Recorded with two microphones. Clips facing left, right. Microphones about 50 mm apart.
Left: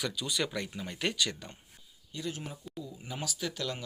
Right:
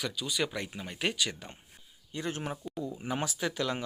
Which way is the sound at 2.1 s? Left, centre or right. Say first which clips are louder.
Right 3 dB; right.